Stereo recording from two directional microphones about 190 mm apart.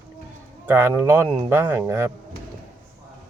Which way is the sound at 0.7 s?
10° right (ahead or behind).